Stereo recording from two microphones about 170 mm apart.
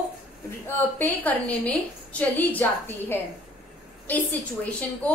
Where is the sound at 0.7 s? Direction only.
10° left (ahead or behind).